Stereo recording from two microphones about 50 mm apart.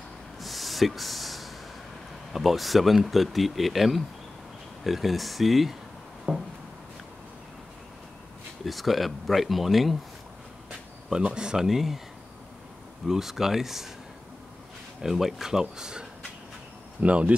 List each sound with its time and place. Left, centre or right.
0.4 s a sound: centre
2.3 s speech: centre
8.6 s speech: centre
11.1 s speech: centre
13.0 s speech: centre
15.0 s speech: centre
17.0 s speech: right